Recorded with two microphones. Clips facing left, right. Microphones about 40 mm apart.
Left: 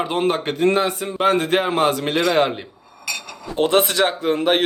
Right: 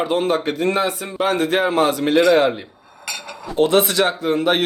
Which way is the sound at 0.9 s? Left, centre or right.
Right.